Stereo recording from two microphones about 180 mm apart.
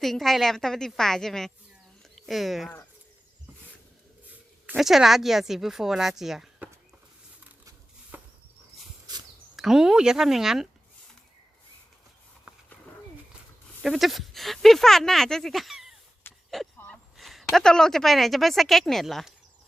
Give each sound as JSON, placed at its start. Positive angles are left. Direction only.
{"t": 0.0, "sound": "speech", "side_deg": 0}
{"t": 2.0, "sound": "a sound", "side_deg": 0}
{"t": 4.6, "sound": "speech", "side_deg": -5}
{"t": 9.6, "sound": "speech", "side_deg": 0}
{"t": 13.8, "sound": "speech", "side_deg": 0}
{"t": 16.2, "sound": "a sound", "side_deg": 10}
{"t": 16.7, "sound": "a woman's voice", "side_deg": 5}